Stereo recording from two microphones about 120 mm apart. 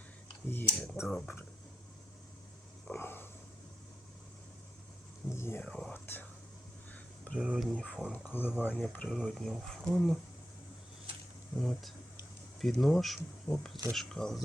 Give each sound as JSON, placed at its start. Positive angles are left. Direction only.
{"t": 0.4, "sound": "speech", "side_deg": 15}
{"t": 1.0, "sound": "speech", "side_deg": 5}
{"t": 2.9, "sound": "a sound", "side_deg": 20}
{"t": 5.3, "sound": "a sound", "side_deg": 20}
{"t": 5.6, "sound": "speech", "side_deg": 5}
{"t": 5.9, "sound": "whispering", "side_deg": 15}
{"t": 7.3, "sound": "speech", "side_deg": -10}
{"t": 8.1, "sound": "speech", "side_deg": 15}
{"t": 9.0, "sound": "speech", "side_deg": 0}
{"t": 11.5, "sound": "speech", "side_deg": 0}